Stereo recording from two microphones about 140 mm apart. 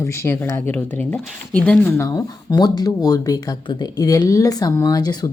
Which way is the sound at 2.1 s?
25° left (ahead or behind).